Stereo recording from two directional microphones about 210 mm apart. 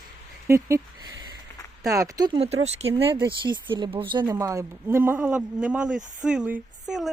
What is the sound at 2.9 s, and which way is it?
Speech, 15° right (ahead or behind).